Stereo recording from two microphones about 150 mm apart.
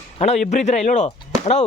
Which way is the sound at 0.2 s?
50° left (ahead or behind).